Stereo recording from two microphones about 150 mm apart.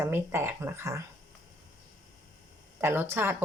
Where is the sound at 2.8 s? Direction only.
15° right (ahead or behind).